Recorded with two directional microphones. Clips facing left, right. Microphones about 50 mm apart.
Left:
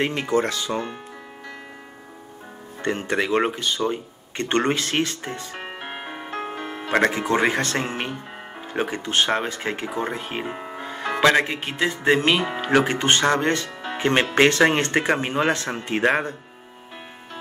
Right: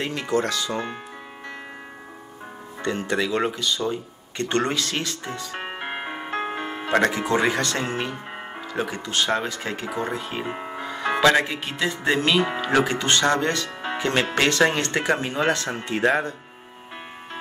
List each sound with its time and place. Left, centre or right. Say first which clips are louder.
0.0 s speech: left 2 dB; left
2.8 s speech: left 1 dB; left
5.6 s music: right 3 dB; right
7.1 s speech: left 1 dB; left
10.5 s music: right 1 dB; right
11.1 s speech: left 1 dB; left